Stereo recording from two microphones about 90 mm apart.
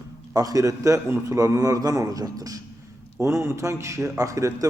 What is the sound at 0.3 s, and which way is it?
A man's voice, 40° right (ahead or behind).